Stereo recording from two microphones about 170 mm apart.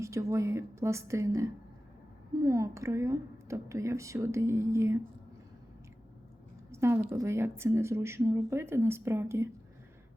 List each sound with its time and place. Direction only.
0.0 s a woman's voice: 15° right (ahead or behind)
6.7 s a woman's voice: 15° right (ahead or behind)